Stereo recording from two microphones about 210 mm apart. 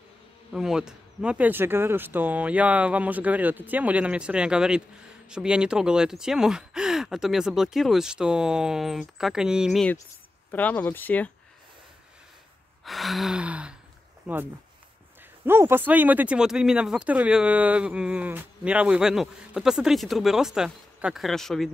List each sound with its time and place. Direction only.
0.5 s speech: centre (ahead or behind)
12.8 s speech: centre (ahead or behind)